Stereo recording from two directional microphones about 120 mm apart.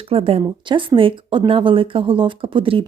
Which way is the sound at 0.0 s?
50° right (ahead or behind).